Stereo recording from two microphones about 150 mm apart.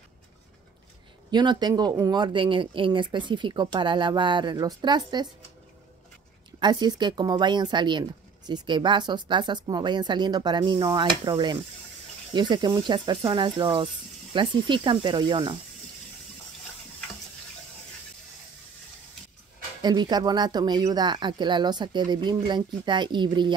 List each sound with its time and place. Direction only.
1.3 s speech: 30° right (ahead or behind)
6.6 s speech: 30° right (ahead or behind)
19.8 s speech: 30° right (ahead or behind)